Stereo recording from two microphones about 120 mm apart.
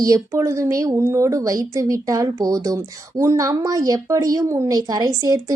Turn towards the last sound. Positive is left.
turn(degrees=-30)  # may be behind; listen again after turning